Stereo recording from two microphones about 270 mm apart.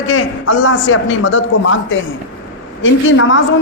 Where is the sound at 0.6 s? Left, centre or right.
Left.